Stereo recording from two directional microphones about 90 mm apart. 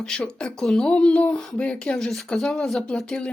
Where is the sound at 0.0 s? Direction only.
10° left (ahead or behind).